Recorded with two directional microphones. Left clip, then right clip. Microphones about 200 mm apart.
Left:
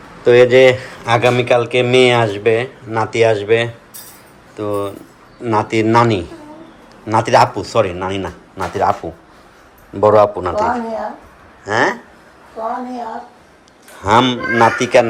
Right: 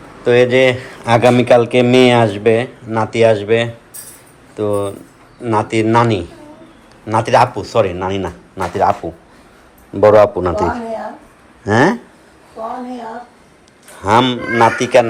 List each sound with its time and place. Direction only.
0.3 s speech: 15° left (ahead or behind); by 11.9 s centre (ahead or behind)
13.9 s speech: 10° left (ahead or behind)